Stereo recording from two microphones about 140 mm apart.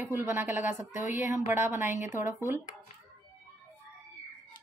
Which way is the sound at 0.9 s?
60° left (ahead or behind).